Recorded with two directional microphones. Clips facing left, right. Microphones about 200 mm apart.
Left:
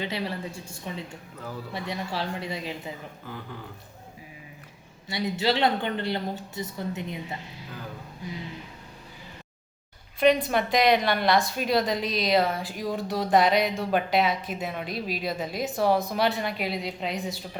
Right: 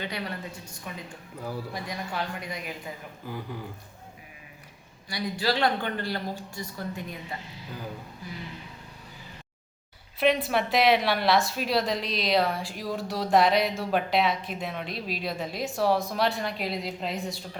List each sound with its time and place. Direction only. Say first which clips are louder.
0.0 s speech: left 3 dB; 25° left (ahead or behind)
3.3 s speech: right 3 dB; 10° right (ahead or behind)
5.0 s speech: left 2 dB; 25° left (ahead or behind)
10.4 s a woman's voice: left 1 dB; 5° right (ahead or behind)